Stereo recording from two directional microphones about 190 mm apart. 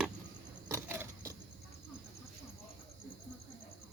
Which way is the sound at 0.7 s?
15° right (ahead or behind).